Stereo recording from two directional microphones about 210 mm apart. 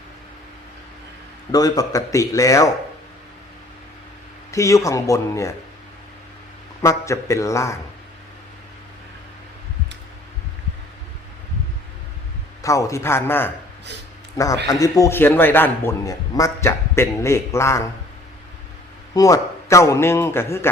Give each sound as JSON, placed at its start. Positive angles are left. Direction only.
{"t": 1.5, "sound": "a man's voice", "side_deg": 15}
{"t": 4.5, "sound": "a man's voice", "side_deg": 15}
{"t": 6.8, "sound": "a man's voice", "side_deg": 15}
{"t": 12.6, "sound": "a man's voice", "side_deg": 15}
{"t": 14.7, "sound": "a man's voice", "side_deg": 15}
{"t": 19.1, "sound": "a man's voice", "side_deg": 15}